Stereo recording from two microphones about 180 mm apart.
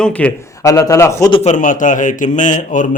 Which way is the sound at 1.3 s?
40° left (ahead or behind).